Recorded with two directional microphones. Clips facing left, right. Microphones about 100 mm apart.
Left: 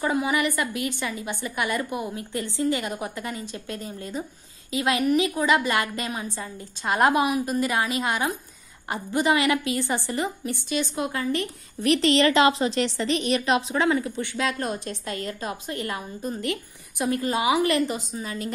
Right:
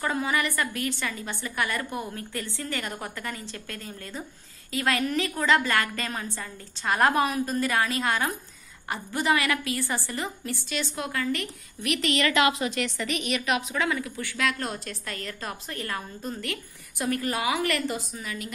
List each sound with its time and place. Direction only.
0.0 s a woman's voice: 20° left (ahead or behind)
11.8 s a woman's voice: 35° left (ahead or behind)
18.2 s a woman's voice: 30° left (ahead or behind)